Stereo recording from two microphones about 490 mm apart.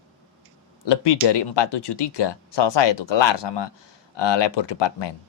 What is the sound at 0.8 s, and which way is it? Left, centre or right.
Speech, left.